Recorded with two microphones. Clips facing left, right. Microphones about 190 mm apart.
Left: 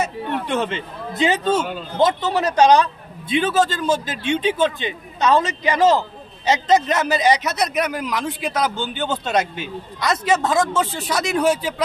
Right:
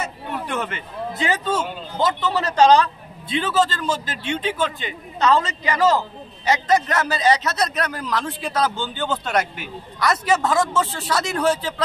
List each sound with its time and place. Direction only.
0.5 s a man's voice: 25° left (ahead or behind)